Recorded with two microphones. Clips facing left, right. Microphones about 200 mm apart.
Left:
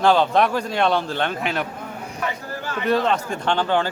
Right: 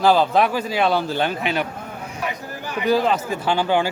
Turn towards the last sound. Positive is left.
turn(degrees=-10)  # may be behind; listen again after turning